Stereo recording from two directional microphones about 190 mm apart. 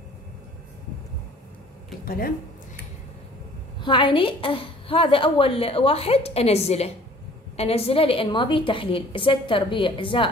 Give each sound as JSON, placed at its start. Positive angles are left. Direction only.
{"t": 2.0, "sound": "speech", "side_deg": 50}
{"t": 3.8, "sound": "a woman's voice", "side_deg": 25}